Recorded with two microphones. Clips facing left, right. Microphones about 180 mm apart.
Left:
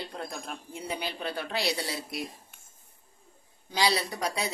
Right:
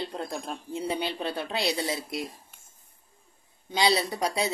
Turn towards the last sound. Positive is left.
turn(degrees=-25)  # may be behind; listen again after turning